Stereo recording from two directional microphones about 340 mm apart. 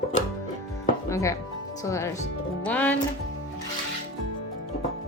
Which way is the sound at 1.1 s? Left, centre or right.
Centre.